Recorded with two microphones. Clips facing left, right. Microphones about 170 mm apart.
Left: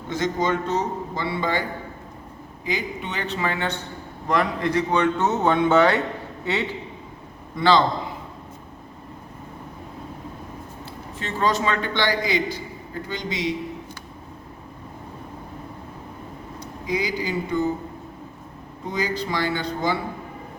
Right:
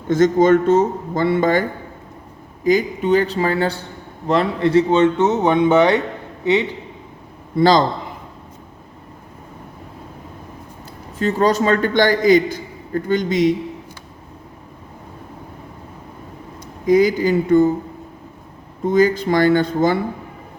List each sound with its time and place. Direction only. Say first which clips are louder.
0.1 s a man's voice: right 11 dB; 50° right (ahead or behind)
2.6 s a man's voice: right 13 dB; 40° right (ahead or behind); by 6.7 s 20° right (ahead or behind)
7.5 s speech: right 5 dB; 40° right (ahead or behind)
11.2 s a man's voice: right 7 dB; 40° right (ahead or behind)
16.8 s a man's voice: right 12 dB; 50° right (ahead or behind)
18.9 s a man's voice: right 11 dB; 50° right (ahead or behind)